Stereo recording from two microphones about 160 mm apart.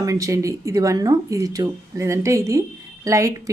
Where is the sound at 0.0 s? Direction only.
20° right (ahead or behind).